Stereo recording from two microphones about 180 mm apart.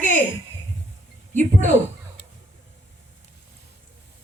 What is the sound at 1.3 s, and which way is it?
Speech, 45° right (ahead or behind).